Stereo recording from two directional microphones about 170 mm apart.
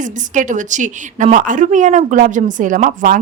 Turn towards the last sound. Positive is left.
turn(degrees=-50)  # may be behind; listen again after turning